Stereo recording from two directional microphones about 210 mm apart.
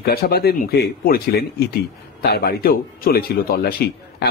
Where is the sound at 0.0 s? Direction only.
45° left (ahead or behind).